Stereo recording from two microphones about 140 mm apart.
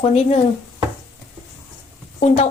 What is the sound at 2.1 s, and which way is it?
Speech, 50° left (ahead or behind).